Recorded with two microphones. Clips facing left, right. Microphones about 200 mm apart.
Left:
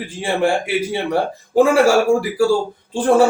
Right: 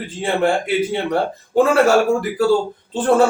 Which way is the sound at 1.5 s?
10° left (ahead or behind).